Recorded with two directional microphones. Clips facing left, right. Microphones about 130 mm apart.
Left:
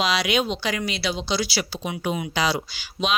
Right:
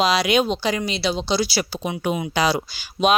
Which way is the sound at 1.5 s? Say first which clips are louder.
Right 3 dB; 45° right (ahead or behind).